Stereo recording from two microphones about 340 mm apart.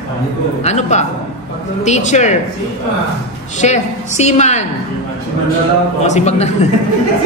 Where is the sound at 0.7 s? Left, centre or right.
Centre.